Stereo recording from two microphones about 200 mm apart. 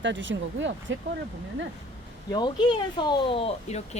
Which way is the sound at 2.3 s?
20° left (ahead or behind).